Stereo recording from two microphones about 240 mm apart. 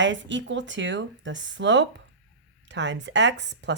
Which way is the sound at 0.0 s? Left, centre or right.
Right.